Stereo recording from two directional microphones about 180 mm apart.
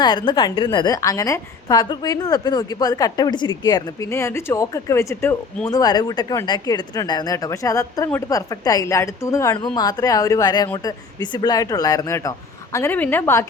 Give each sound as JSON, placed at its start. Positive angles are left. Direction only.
{"t": 0.0, "sound": "a woman's voice", "side_deg": 25}